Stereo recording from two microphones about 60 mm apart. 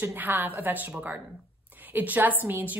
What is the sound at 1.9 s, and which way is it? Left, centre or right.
Speech, right.